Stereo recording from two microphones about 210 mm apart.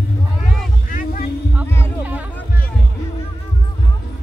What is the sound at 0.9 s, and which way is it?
Music, 40° left (ahead or behind).